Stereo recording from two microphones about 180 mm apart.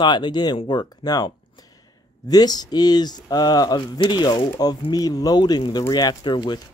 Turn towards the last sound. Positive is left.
turn(degrees=25)  # may be behind; listen again after turning